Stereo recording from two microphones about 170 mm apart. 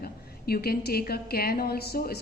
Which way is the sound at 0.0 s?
65° left (ahead or behind).